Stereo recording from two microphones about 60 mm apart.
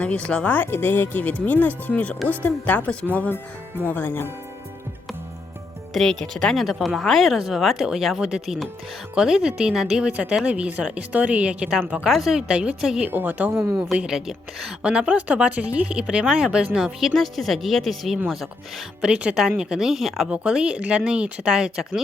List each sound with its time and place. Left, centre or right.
0.0 s speech: left
0.7 s speech: left; by 3.1 s centre
3.8 s speech: left
5.9 s speech: centre
10.0 s speech: centre
12.0 s speech: centre
13.1 s a woman's voice: right
13.9 s speech: centre
17.2 s speech: centre
19.0 s speech: centre